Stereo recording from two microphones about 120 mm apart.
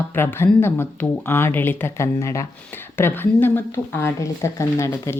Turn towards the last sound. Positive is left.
turn(degrees=25)  # may be behind; listen again after turning